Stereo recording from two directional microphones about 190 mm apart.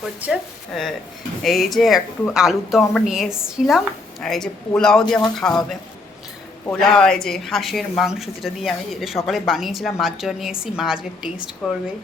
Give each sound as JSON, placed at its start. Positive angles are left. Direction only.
{"t": 0.0, "sound": "a woman's voice", "side_deg": -5}
{"t": 6.7, "sound": "a woman's voice", "side_deg": 5}